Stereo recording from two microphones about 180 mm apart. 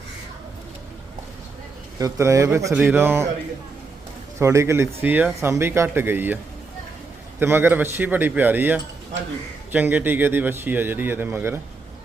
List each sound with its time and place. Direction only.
2.0 s speech: 15° right (ahead or behind)
4.4 s speech: 15° right (ahead or behind)